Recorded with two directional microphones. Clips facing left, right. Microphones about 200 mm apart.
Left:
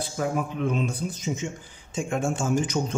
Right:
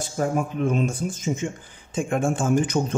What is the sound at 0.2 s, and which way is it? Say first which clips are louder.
Speech: right 3 dB; 45° right (ahead or behind).